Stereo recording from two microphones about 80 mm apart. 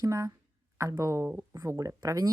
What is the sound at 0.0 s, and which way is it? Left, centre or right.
Speech, right.